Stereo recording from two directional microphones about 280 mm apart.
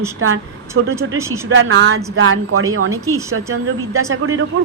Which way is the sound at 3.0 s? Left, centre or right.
Centre.